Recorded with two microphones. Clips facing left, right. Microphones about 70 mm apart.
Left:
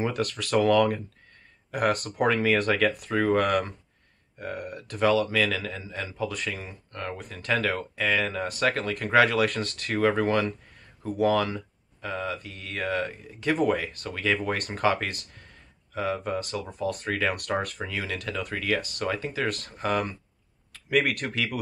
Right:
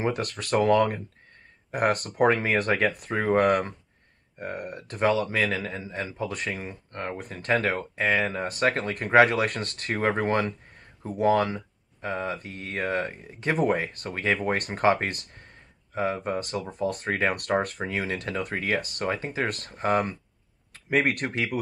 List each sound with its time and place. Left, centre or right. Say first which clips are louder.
0.0 s speech: even; right
0.7 s speech: even; right
1.9 s speech: even; right
3.0 s speech: right 1 dB; right
4.4 s speech: right 1 dB; right
9.5 s speech: left 1 dB; right
11.2 s speech: right 2 dB; right
12.0 s speech: right 1 dB; right
17.5 s speech: right 3 dB; right